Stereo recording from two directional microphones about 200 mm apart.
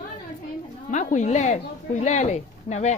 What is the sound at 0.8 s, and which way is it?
Speech, 40° left (ahead or behind).